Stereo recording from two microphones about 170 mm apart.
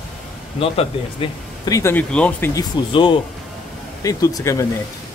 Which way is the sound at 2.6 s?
30° left (ahead or behind).